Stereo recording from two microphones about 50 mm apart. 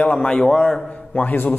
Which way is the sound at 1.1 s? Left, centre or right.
Left.